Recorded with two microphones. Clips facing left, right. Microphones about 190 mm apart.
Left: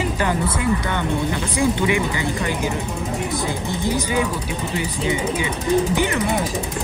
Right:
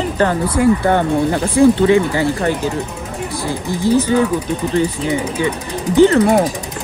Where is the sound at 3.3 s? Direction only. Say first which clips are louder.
Right 3 dB; 20° left (ahead or behind).